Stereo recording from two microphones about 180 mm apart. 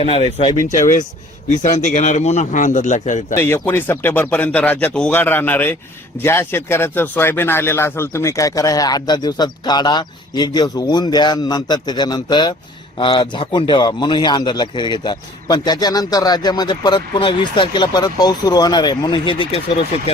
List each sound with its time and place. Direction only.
0.0 s speech: 35° left (ahead or behind)
1.6 s a man's voice: 45° left (ahead or behind)
3.3 s a man's voice: 15° left (ahead or behind); by 20.1 s 30° left (ahead or behind)